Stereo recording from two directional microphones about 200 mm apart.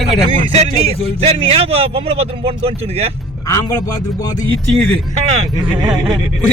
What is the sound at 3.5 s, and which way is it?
Speech, 15° left (ahead or behind).